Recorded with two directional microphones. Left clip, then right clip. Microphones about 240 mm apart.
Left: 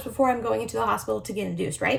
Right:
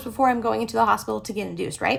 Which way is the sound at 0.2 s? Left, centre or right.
Centre.